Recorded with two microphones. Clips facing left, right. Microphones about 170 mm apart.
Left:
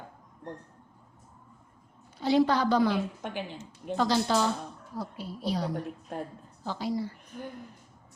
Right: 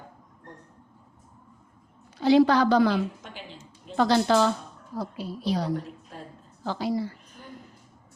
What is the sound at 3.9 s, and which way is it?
Speech, 65° right (ahead or behind).